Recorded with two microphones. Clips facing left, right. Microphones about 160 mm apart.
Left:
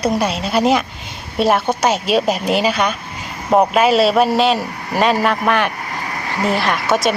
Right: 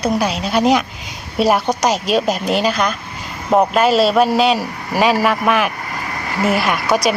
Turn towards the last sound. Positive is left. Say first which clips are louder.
# even
turn(degrees=0)  # may be behind; listen again after turning